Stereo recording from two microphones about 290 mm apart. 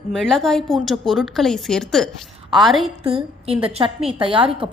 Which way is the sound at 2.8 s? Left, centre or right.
Centre.